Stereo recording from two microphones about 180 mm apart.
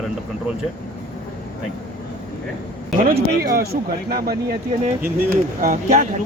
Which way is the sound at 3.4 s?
55° right (ahead or behind).